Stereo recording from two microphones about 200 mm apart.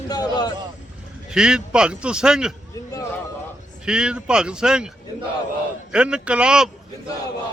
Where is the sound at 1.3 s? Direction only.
5° right (ahead or behind).